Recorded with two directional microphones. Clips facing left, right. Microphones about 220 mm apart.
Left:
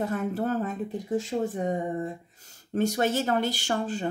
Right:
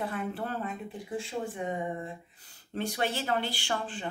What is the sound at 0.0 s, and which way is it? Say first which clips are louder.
Speech: left 6 dB; 45° left (ahead or behind).